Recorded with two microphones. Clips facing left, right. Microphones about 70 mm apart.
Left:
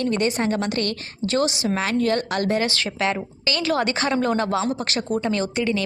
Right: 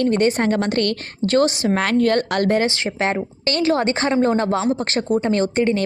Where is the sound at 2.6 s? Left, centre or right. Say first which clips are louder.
Right 3 dB; right.